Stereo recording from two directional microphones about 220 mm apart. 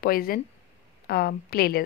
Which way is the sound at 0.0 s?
40° left (ahead or behind).